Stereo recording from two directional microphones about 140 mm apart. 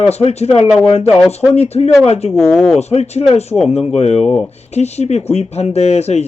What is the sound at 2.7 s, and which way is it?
Speech, 50° left (ahead or behind).